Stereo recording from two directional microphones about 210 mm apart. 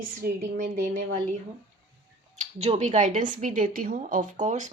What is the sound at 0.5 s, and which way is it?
Speech, 35° right (ahead or behind).